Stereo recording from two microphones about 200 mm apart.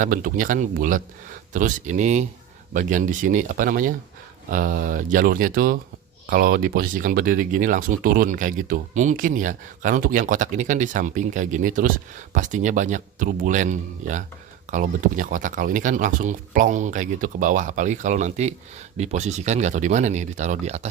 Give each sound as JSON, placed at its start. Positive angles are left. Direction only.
{"t": 0.0, "sound": "speech", "side_deg": -45}